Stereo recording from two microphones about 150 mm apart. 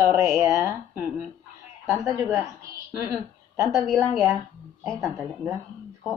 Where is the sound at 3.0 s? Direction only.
20° right (ahead or behind).